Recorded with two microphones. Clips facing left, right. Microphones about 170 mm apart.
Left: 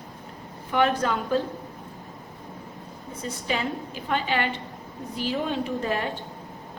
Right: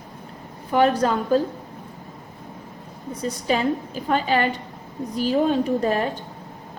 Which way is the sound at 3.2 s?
40° right (ahead or behind).